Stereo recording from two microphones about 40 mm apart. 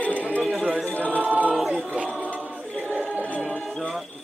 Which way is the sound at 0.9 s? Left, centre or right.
Left.